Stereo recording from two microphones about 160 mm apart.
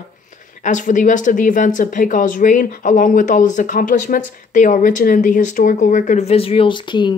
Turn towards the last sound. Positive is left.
turn(degrees=30)  # may be behind; listen again after turning